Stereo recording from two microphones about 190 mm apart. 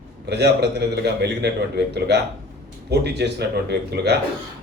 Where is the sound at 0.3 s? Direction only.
60° right (ahead or behind).